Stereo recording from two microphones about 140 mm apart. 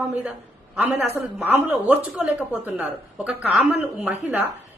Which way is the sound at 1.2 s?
15° right (ahead or behind).